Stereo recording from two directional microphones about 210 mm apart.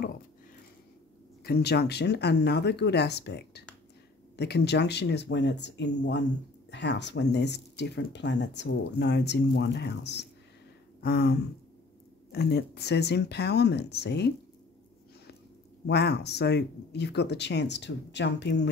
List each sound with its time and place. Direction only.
1.4 s speech: 50° left (ahead or behind)
11.0 s a sound: 50° left (ahead or behind)
12.3 s speech: 50° left (ahead or behind)
15.9 s speech: 50° left (ahead or behind)